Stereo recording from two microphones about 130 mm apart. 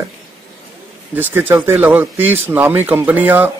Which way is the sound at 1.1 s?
15° right (ahead or behind).